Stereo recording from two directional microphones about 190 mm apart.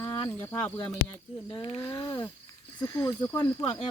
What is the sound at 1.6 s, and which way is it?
Speech, 30° left (ahead or behind).